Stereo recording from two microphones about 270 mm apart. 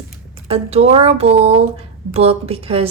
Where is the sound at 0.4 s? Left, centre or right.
Right.